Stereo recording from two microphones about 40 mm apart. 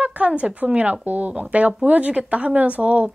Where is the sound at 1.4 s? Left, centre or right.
Right.